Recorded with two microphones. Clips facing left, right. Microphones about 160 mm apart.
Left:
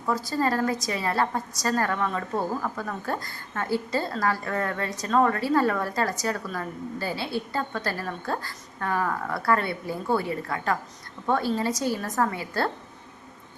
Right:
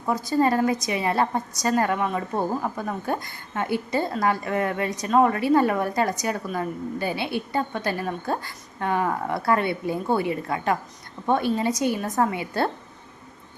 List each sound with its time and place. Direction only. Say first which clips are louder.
0.0 s a woman's voice: right 4 dB; 20° right (ahead or behind)